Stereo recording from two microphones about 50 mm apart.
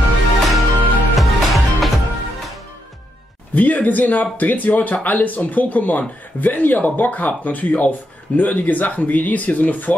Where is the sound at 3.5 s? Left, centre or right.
Left.